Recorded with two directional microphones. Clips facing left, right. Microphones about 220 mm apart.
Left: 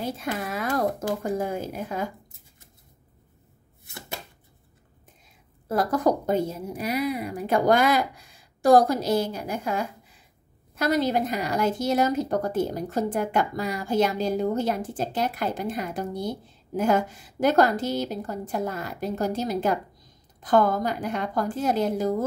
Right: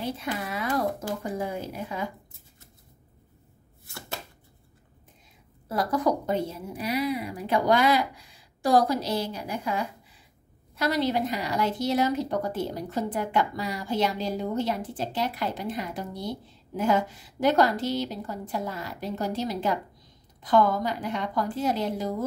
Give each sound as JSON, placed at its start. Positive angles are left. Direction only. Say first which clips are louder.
{"t": 0.0, "sound": "a woman's voice", "louder": "left 2 dB", "side_deg": 45}
{"t": 5.7, "sound": "a woman's voice", "louder": "left 3 dB", "side_deg": 45}